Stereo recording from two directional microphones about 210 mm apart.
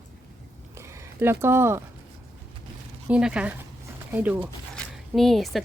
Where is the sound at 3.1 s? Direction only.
5° right (ahead or behind).